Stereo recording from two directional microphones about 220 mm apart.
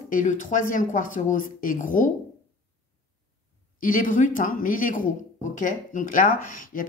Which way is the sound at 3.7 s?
40° left (ahead or behind).